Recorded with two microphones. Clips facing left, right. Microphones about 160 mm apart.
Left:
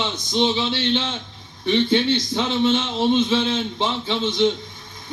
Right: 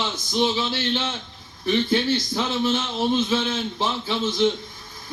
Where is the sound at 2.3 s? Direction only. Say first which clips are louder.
Left 3 dB; 25° left (ahead or behind).